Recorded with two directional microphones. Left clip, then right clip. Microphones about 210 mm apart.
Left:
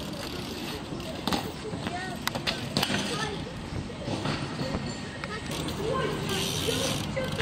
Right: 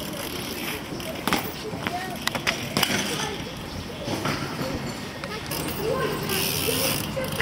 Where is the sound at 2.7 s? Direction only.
25° right (ahead or behind).